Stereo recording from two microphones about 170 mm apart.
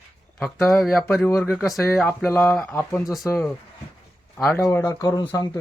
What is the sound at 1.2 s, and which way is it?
Speech, 15° left (ahead or behind).